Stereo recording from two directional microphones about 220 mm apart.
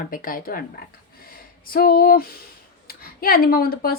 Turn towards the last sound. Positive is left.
turn(degrees=45)  # may be behind; listen again after turning